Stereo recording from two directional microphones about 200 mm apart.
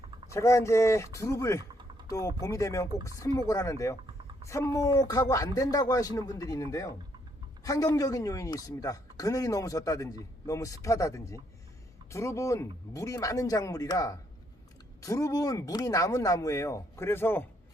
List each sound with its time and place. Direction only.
0.3 s speech: 15° left (ahead or behind)